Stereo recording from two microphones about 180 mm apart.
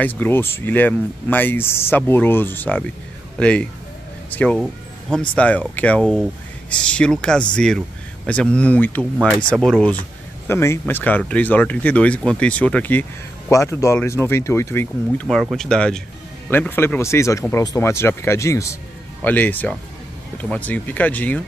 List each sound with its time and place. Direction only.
0.0 s speech: 10° left (ahead or behind)
4.3 s music: 10° left (ahead or behind)
5.3 s speech: 5° left (ahead or behind)